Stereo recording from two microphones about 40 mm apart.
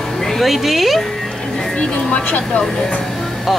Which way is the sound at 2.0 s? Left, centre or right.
Left.